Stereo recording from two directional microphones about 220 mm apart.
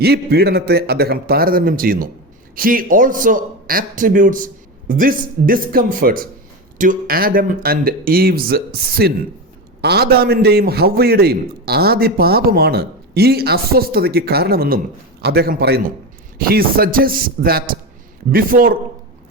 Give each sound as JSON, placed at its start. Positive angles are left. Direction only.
{"t": 0.0, "sound": "a man's voice", "side_deg": -45}